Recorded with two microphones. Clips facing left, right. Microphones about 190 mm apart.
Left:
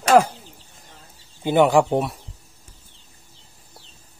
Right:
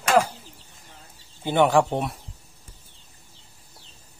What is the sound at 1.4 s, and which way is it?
Speech, 10° left (ahead or behind).